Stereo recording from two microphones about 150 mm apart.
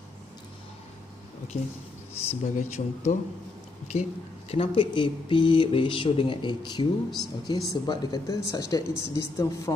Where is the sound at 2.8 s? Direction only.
50° left (ahead or behind).